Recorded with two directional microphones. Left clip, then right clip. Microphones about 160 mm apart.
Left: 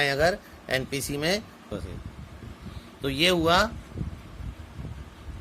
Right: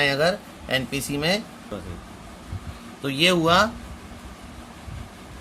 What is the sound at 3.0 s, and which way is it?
Speech, 35° left (ahead or behind).